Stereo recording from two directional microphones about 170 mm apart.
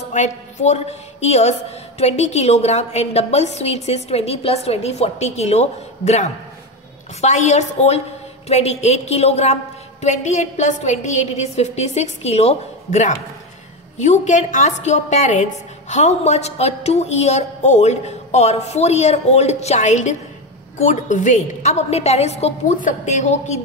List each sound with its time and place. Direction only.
0.1 s a woman's voice: 45° left (ahead or behind)